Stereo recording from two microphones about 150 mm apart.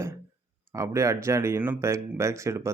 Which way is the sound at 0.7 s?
20° right (ahead or behind).